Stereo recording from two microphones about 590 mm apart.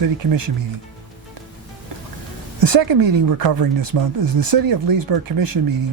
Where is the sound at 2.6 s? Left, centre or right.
Right.